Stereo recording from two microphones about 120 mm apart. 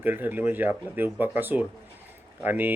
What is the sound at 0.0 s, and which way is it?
Speech, 15° right (ahead or behind).